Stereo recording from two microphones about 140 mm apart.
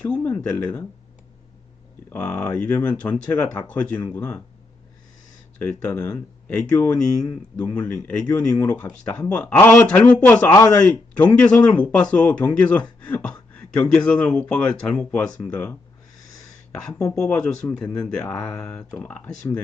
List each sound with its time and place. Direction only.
0.0 s speech: 10° left (ahead or behind)
2.0 s speech: 10° left (ahead or behind)
5.6 s speech: 10° left (ahead or behind)
10.5 s speech: 25° left (ahead or behind)
11.2 s speech: 10° left (ahead or behind)
17.7 s speech: 20° left (ahead or behind)